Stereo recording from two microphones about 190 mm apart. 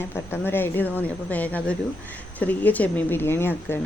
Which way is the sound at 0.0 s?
10° left (ahead or behind).